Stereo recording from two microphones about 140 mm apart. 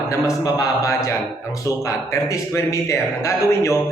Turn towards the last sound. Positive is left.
turn(degrees=20)  # may be behind; listen again after turning